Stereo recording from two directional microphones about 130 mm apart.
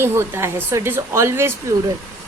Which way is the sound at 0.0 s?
20° right (ahead or behind).